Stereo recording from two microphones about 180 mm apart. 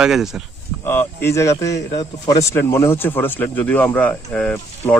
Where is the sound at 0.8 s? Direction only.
15° left (ahead or behind).